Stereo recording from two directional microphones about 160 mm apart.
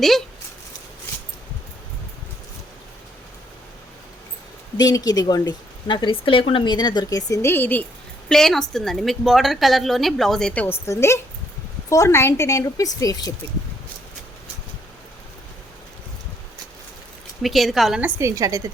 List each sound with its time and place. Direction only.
4.8 s speech: 25° left (ahead or behind)
17.4 s speech: centre (ahead or behind)
18.2 s a woman's voice: 20° right (ahead or behind)